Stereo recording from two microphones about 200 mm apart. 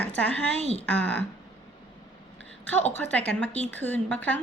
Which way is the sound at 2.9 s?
10° left (ahead or behind).